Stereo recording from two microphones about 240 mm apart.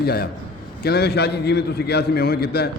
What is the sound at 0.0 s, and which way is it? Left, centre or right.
A man's voice, left.